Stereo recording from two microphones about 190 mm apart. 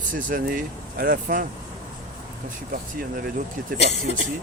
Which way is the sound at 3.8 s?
50° right (ahead or behind).